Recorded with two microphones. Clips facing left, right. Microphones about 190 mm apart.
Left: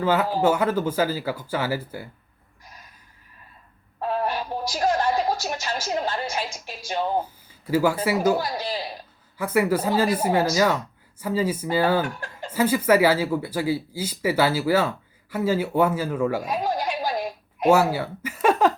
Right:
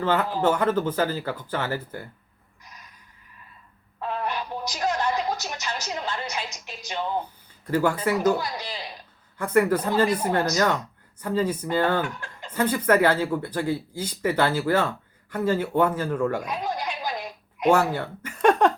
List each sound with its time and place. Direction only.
0.0 s speech: 5° left (ahead or behind)
4.0 s a sound: 35° left (ahead or behind)
7.7 s speech: 5° left (ahead or behind)
8.4 s a man's voice: 40° left (ahead or behind)
9.4 s speech: 5° left (ahead or behind)
12.0 s speech: 40° left (ahead or behind)
12.5 s speech: 5° left (ahead or behind)
16.6 s a sound: 40° left (ahead or behind)
17.7 s speech: 5° left (ahead or behind)